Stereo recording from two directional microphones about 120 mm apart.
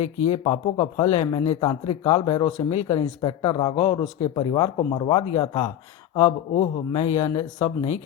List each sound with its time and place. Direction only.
0.3 s speech: 55° left (ahead or behind); by 5.7 s 40° left (ahead or behind)
6.1 s speech: 55° left (ahead or behind)